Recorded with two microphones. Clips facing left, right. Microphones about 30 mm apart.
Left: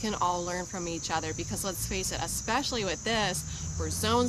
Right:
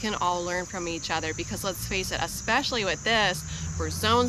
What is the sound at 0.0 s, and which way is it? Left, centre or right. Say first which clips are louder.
Speech: right 2 dB; right.